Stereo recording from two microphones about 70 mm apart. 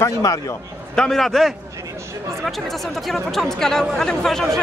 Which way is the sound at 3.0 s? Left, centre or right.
Centre.